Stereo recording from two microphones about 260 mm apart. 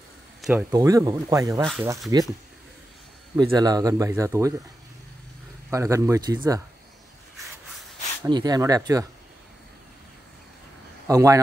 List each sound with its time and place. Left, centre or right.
0.4 s a sound: centre
0.7 s speech: centre
1.6 s speech: centre
2.1 s speech: centre
3.3 s speech: centre
5.7 s speech: centre
8.2 s speech: centre
11.1 s a man's voice: centre